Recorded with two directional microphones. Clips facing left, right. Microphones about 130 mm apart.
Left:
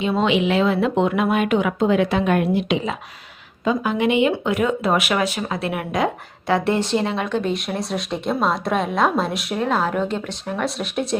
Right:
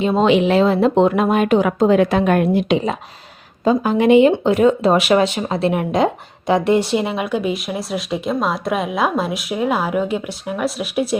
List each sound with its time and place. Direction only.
0.0 s speech: 35° right (ahead or behind)
6.5 s speech: 15° right (ahead or behind)